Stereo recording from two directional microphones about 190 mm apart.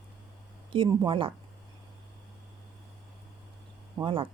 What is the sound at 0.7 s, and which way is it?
Speech, 25° right (ahead or behind).